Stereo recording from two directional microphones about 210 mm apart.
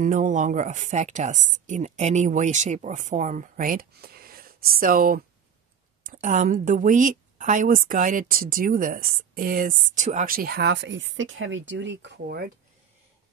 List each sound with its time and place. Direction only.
0.0 s a woman's voice: 35° right (ahead or behind); by 12.4 s 55° right (ahead or behind)